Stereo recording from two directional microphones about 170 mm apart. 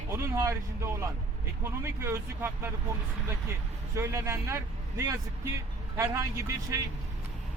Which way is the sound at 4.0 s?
15° right (ahead or behind).